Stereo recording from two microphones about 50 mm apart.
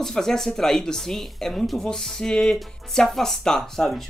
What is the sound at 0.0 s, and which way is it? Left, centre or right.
Speech, centre.